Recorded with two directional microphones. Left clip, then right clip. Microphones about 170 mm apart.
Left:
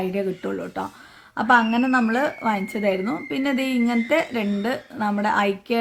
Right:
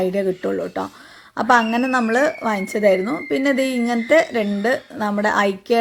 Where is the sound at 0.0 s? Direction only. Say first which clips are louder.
Right 5 dB; 20° right (ahead or behind).